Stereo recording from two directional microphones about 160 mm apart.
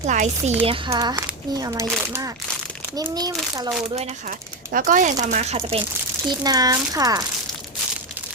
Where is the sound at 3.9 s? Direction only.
45° right (ahead or behind).